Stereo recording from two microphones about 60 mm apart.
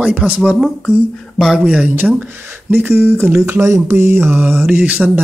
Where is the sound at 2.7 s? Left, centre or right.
Right.